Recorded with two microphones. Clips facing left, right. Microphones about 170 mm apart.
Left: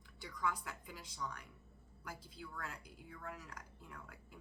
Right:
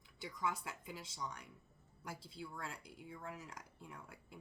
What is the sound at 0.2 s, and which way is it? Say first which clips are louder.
Speech: even; 25° right (ahead or behind).